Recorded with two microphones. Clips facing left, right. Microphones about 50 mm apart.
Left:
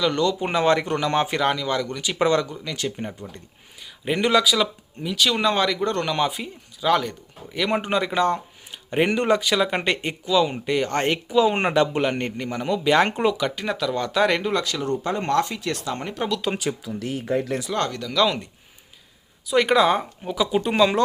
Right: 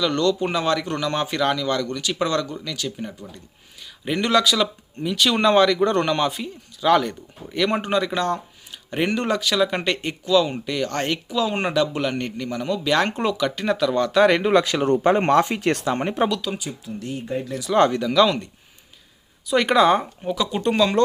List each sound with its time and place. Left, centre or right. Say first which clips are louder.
0.0 s speech: right 1 dB; centre; by 3.2 s left
4.0 s speech: even; centre
6.1 s speech: right 1 dB; centre
13.2 s speech: right 1 dB; centre
14.5 s speech: right 6 dB; right
15.3 s speech: even; right
15.5 s speech: right 6 dB; right
15.9 s speech: right 6 dB; right
17.2 s speech: left 4 dB; left
17.7 s speech: right 13 dB; centre
18.2 s speech: right 3 dB; centre
19.5 s speech: right 1 dB; centre